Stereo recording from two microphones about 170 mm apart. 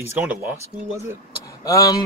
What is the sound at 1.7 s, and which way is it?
Speech, 20° left (ahead or behind).